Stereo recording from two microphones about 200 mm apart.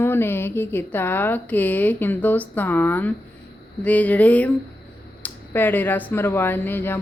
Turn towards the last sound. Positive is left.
turn(degrees=10)  # may be behind; listen again after turning